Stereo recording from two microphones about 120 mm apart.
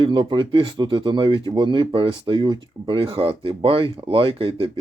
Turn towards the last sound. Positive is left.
turn(degrees=-45)  # may be behind; listen again after turning